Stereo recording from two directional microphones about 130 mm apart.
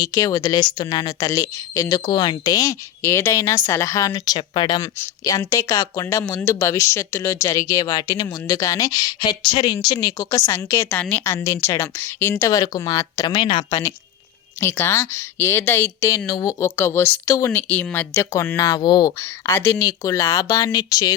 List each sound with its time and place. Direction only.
0.0 s speech: 25° left (ahead or behind)
4.8 s speech: 25° left (ahead or behind)
14.6 s speech: 20° left (ahead or behind)
19.5 s speech: 20° left (ahead or behind)